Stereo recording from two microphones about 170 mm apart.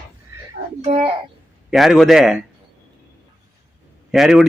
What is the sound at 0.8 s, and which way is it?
Speech, 35° right (ahead or behind).